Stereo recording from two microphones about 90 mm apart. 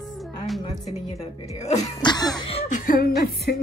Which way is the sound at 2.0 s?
50° left (ahead or behind).